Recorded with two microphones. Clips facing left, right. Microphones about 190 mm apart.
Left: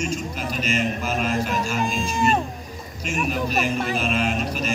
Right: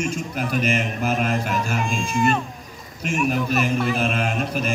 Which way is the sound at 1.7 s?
35° left (ahead or behind).